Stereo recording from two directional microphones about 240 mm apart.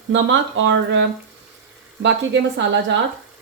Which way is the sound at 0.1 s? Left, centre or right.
Right.